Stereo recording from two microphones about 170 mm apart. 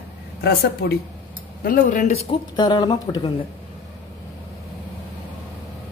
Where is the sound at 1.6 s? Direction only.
55° left (ahead or behind).